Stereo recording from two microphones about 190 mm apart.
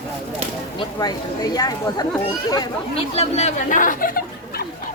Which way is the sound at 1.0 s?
20° left (ahead or behind).